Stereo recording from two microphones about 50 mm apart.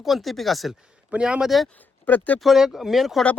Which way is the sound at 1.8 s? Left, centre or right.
Left.